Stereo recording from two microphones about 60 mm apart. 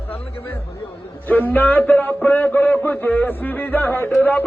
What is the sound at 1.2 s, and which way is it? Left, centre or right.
A man's voice, left.